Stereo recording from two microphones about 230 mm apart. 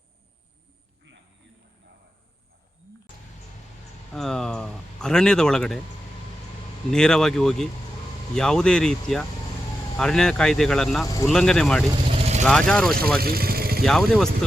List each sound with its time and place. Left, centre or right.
4.1 s a man's voice: centre
6.9 s a man's voice: centre
11.0 s speech: centre
11.3 s a man's voice: centre
12.0 s vehicle: right
12.5 s a man's voice: centre
13.1 s vehicle: right
13.8 s a man's voice: centre